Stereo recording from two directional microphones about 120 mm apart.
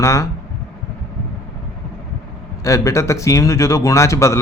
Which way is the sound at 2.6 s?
25° left (ahead or behind).